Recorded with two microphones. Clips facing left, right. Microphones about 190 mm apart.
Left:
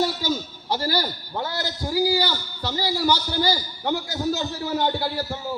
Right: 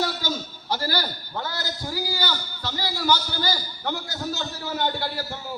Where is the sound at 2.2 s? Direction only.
15° left (ahead or behind).